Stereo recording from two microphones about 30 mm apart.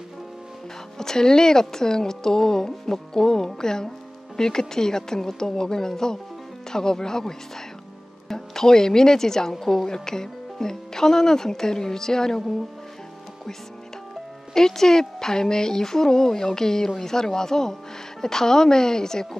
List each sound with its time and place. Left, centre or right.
0.9 s a woman's voice: centre
9.8 s speech: centre
14.5 s a woman's voice: centre